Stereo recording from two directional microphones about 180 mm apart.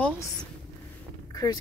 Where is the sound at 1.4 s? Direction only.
20° left (ahead or behind).